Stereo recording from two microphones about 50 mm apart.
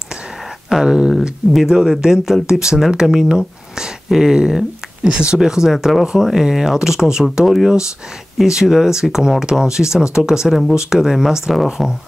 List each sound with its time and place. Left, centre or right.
0.7 s speech: centre